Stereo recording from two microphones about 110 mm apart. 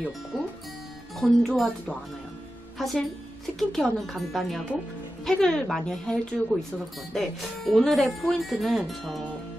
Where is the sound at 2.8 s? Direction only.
Centre (ahead or behind).